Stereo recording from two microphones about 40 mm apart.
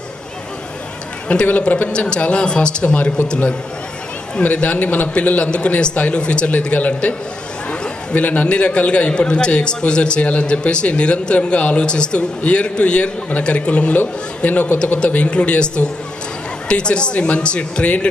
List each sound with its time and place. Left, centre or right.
1.3 s a man's voice: left
1.6 s a man's voice: left
1.9 s a man's voice: left